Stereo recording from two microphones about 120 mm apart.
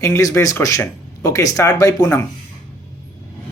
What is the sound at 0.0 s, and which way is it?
A woman's voice, 25° left (ahead or behind).